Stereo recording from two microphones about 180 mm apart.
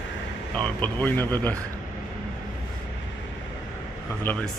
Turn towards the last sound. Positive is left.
turn(degrees=10)  # may be behind; listen again after turning